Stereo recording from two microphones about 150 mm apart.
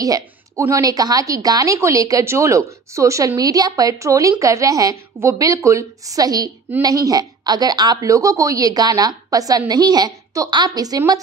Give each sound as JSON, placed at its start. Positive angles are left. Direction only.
{"t": 0.0, "sound": "a woman's voice", "side_deg": -20}